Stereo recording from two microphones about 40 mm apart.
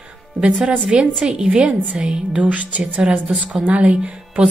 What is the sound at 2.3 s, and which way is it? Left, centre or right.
A woman's voice, right.